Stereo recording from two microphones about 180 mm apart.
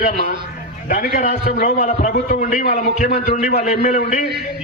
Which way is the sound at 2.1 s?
55° left (ahead or behind).